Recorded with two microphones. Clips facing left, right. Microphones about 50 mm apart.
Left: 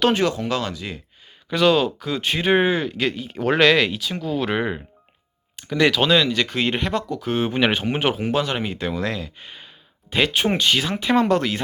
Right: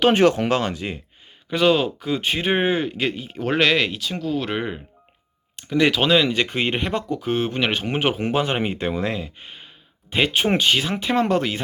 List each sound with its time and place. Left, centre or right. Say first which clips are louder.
0.1 s speech: right 4 dB; right
1.5 s speech: left 1 dB; centre
6.2 s speech: even; right; by 8.3 s centre
8.3 s speech: right 1 dB; right; by 11.6 s centre